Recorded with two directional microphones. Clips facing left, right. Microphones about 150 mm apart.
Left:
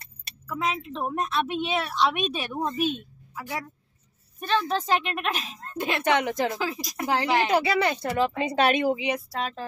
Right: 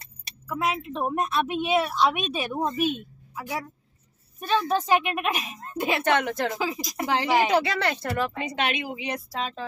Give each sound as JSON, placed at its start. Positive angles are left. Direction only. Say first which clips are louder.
{"t": 0.5, "sound": "a woman's voice", "louder": "right 1 dB", "side_deg": -10}
{"t": 6.0, "sound": "speech", "louder": "left 3 dB", "side_deg": 15}
{"t": 7.0, "sound": "a woman's voice", "louder": "right 1 dB", "side_deg": -15}
{"t": 7.5, "sound": "speech", "louder": "left 1 dB", "side_deg": 10}
{"t": 8.4, "sound": "speech", "louder": "left 6 dB", "side_deg": 35}
{"t": 9.3, "sound": "speech", "louder": "even", "side_deg": 5}